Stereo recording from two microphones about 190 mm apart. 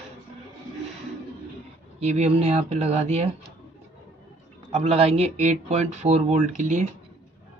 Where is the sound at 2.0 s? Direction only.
35° right (ahead or behind).